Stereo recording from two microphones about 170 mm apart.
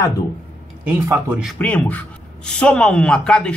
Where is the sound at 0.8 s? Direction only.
15° right (ahead or behind).